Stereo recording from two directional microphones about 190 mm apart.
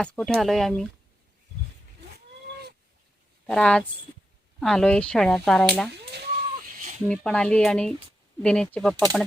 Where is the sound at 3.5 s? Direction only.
5° left (ahead or behind).